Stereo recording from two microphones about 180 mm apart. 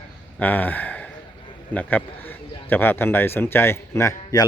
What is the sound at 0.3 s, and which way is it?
A man's voice, 10° left (ahead or behind).